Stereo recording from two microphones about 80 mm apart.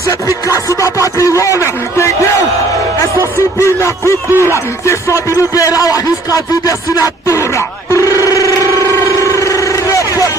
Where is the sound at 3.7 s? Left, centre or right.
Left.